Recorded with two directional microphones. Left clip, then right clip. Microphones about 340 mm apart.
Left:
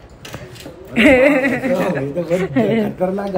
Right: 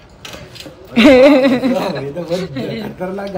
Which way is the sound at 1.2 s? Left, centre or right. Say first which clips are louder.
Right 5 dB; right.